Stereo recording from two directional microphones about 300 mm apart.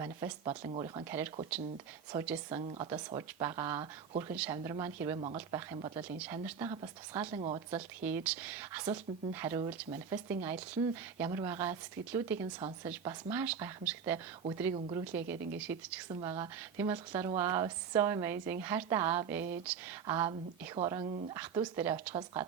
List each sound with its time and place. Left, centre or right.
0.3 s speech: centre
8.0 s speech: centre